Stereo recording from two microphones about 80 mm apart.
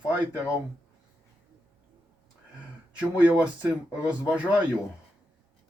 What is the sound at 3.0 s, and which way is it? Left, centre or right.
Speech, centre.